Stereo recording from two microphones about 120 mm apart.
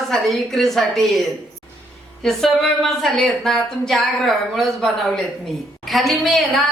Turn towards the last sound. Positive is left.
turn(degrees=0)  # may be behind; listen again after turning